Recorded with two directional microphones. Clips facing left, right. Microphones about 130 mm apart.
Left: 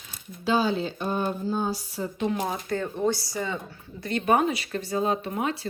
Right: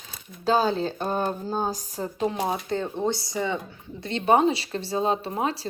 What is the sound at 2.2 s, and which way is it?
Speech, 25° right (ahead or behind).